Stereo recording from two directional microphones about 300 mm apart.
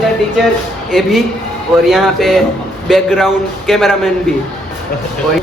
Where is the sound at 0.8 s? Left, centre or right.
Centre.